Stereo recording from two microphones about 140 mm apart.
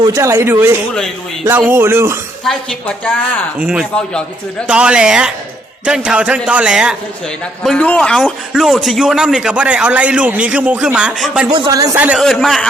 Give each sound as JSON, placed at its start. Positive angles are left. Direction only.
{"t": 0.1, "sound": "a man's voice", "side_deg": -20}
{"t": 2.5, "sound": "speech", "side_deg": 5}
{"t": 3.6, "sound": "a man's voice", "side_deg": -5}
{"t": 7.6, "sound": "a man's voice", "side_deg": 5}
{"t": 11.5, "sound": "a man's voice", "side_deg": -30}
{"t": 11.9, "sound": "a man's voice", "side_deg": -10}
{"t": 12.2, "sound": "speech", "side_deg": 5}